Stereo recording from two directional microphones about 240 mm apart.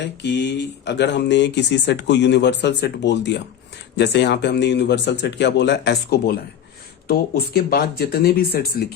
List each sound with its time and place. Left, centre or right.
0.0 s speech: left